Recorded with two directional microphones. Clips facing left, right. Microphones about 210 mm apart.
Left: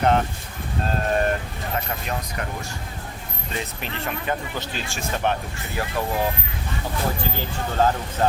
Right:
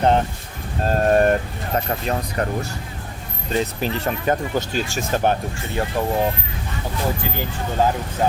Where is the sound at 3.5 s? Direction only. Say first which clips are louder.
Right 9 dB; 35° right (ahead or behind).